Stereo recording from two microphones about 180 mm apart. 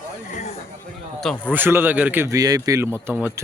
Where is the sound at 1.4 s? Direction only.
10° right (ahead or behind).